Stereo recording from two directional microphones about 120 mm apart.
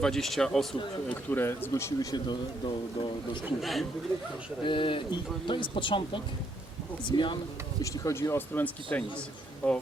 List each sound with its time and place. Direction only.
0.0 s speech: centre (ahead or behind)
1.0 s speech: 15° left (ahead or behind); by 3.1 s 40° left (ahead or behind)
3.6 s speech: centre (ahead or behind)
4.6 s speech: 45° left (ahead or behind)
7.8 s speech: 25° left (ahead or behind)